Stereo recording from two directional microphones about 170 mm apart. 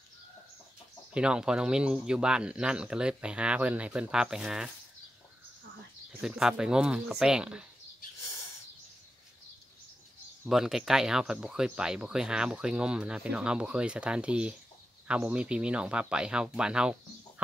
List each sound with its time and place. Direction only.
1.1 s speech: 5° right (ahead or behind)
6.2 s speech: 5° right (ahead or behind)
10.4 s speech: 5° right (ahead or behind)